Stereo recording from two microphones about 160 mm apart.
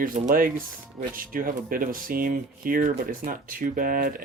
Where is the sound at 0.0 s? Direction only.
60° right (ahead or behind).